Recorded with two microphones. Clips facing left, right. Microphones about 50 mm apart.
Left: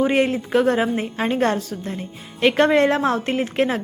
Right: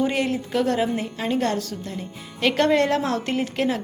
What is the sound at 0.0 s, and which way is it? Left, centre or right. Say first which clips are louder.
A woman's voice: left 4 dB; left.